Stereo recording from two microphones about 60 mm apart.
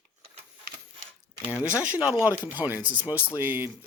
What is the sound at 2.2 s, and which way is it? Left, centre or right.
Speech, right.